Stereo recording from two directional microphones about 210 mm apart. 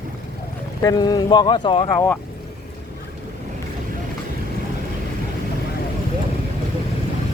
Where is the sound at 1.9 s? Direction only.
10° left (ahead or behind).